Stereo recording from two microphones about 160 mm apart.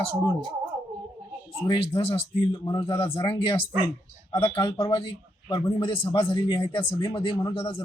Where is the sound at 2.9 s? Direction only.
15° left (ahead or behind).